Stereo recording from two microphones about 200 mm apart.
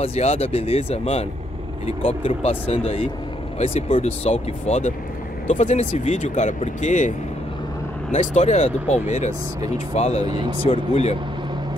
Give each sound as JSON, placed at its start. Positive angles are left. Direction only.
{"t": 0.0, "sound": "speech", "side_deg": 30}
{"t": 10.2, "sound": "speech", "side_deg": -20}
{"t": 10.6, "sound": "speech", "side_deg": 30}